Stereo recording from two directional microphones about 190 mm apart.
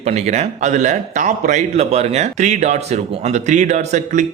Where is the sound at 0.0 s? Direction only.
35° right (ahead or behind).